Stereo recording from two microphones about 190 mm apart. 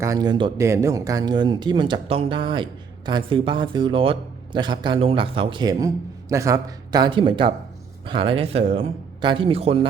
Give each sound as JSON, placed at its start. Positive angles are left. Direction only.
{"t": 0.0, "sound": "a man's voice", "side_deg": -20}